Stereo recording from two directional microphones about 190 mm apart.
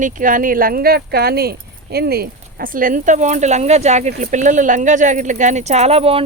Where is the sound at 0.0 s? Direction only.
45° right (ahead or behind).